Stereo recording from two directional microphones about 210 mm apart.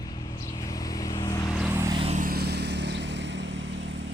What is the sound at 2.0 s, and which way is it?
Vehicle, 35° right (ahead or behind).